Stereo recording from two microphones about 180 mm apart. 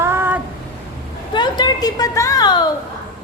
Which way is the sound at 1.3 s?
25° left (ahead or behind).